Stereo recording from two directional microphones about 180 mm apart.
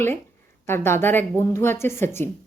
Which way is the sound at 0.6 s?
15° left (ahead or behind).